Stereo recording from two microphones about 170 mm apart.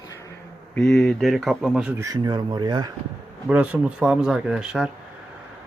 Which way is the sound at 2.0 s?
20° right (ahead or behind).